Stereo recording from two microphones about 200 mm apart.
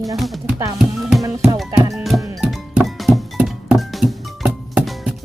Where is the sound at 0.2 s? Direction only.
Centre (ahead or behind).